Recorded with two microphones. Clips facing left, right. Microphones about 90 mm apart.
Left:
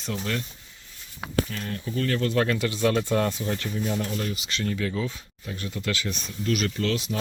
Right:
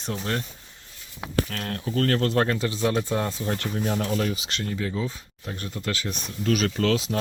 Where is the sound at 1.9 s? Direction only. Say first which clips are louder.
Right 3 dB; 55° right (ahead or behind); by 2.9 s 25° right (ahead or behind).